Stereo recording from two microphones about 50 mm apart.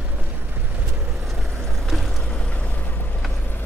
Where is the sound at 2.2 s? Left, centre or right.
Left.